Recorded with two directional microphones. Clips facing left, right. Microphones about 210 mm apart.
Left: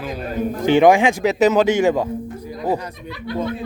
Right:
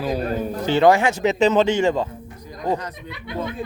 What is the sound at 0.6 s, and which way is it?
A man's voice, 15° left (ahead or behind).